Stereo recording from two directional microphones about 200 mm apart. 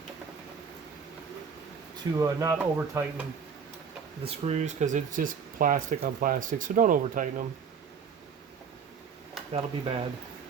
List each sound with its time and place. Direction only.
2.1 s speech: 15° right (ahead or behind)
4.2 s speech: 30° right (ahead or behind)
9.5 s speech: 30° right (ahead or behind)